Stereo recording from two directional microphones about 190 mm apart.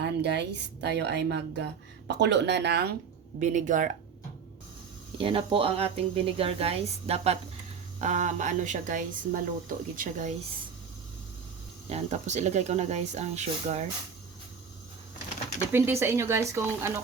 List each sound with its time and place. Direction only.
0.0 s a woman's voice: 65° right (ahead or behind)
3.4 s speech: 40° right (ahead or behind)
5.1 s speech: 30° right (ahead or behind); by 10.3 s 45° right (ahead or behind)
11.9 s speech: 35° right (ahead or behind)
15.7 s speech: 15° right (ahead or behind)